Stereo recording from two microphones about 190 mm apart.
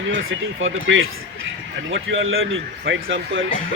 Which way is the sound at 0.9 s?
85° right.